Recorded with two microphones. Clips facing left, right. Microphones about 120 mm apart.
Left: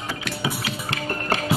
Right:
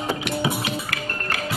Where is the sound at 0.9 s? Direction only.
25° left (ahead or behind).